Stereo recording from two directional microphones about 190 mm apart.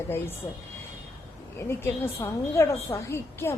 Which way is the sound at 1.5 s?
15° left (ahead or behind).